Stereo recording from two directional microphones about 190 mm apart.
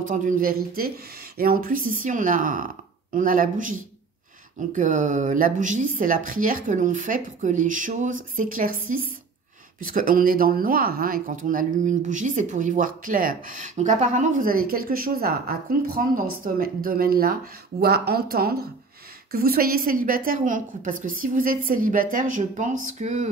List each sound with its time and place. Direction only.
0.1 s speech: 45° right (ahead or behind)
9.8 s speech: 45° right (ahead or behind)
16.5 s speech: 50° right (ahead or behind)